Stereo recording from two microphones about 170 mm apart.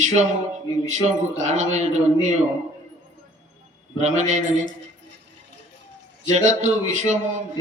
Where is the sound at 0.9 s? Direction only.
45° right (ahead or behind).